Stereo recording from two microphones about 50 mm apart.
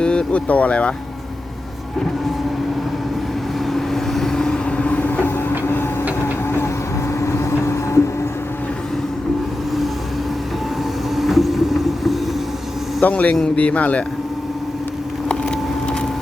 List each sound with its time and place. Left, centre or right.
0.0 s speech: centre
3.7 s vehicle: centre
4.9 s music: left
7.1 s vehicle: left
11.1 s vehicle: centre
13.0 s a man's voice: left
15.3 s vehicle: centre